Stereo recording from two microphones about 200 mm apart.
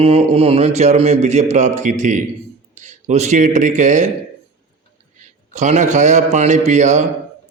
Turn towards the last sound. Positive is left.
turn(degrees=-35)  # may be behind; listen again after turning